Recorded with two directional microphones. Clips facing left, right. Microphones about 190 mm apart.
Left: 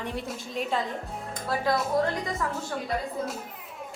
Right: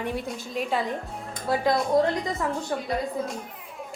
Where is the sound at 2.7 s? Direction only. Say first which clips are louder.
Right 3 dB; 20° right (ahead or behind).